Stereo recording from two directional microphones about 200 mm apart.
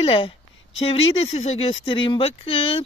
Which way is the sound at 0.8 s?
30° left (ahead or behind).